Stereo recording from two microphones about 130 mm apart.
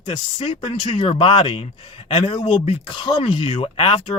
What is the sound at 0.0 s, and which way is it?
Speech, 40° left (ahead or behind).